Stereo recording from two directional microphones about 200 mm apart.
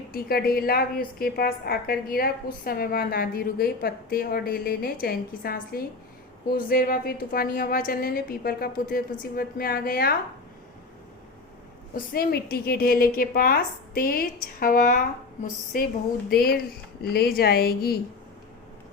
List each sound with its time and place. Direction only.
0.1 s a woman's voice: 50° left (ahead or behind)
11.9 s a woman's voice: 50° left (ahead or behind)